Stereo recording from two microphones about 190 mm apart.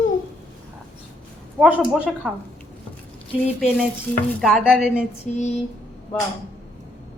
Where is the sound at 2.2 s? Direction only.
5° right (ahead or behind).